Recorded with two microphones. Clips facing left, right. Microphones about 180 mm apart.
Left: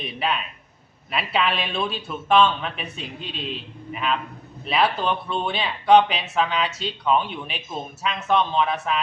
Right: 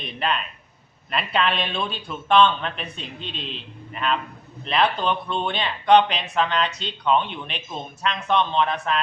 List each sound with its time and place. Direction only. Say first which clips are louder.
0.0 s speech: even; 5° left (ahead or behind)